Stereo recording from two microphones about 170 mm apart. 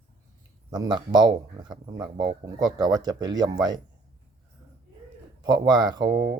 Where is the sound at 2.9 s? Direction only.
25° right (ahead or behind).